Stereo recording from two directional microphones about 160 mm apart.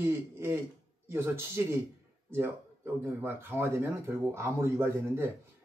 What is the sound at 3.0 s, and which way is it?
Speech, 15° right (ahead or behind).